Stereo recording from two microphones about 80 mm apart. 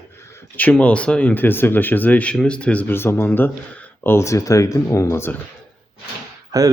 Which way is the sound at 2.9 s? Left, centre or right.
Left.